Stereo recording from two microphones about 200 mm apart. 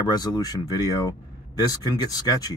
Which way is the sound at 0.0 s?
20° left (ahead or behind).